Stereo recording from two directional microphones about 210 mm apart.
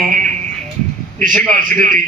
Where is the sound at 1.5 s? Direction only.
40° right (ahead or behind).